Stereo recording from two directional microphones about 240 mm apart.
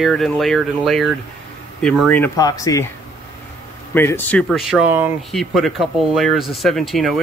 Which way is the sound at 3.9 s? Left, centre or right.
Centre.